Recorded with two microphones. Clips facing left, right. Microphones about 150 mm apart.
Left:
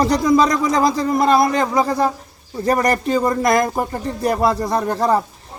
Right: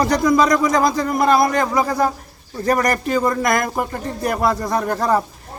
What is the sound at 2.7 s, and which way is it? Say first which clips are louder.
A man's voice: left 1 dB; 30° left (ahead or behind).